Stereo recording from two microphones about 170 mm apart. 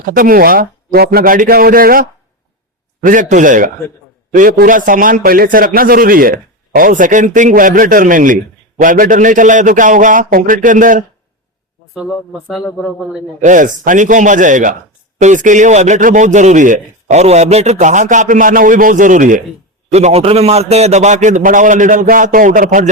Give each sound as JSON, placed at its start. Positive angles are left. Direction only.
{"t": 0.0, "sound": "a man's voice", "side_deg": -55}
{"t": 12.0, "sound": "a man's voice", "side_deg": 5}
{"t": 13.4, "sound": "a man's voice", "side_deg": -50}